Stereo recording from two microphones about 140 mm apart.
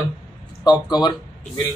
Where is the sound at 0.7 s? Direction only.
30° left (ahead or behind).